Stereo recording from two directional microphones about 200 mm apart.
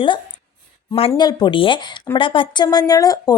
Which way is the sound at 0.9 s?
25° left (ahead or behind).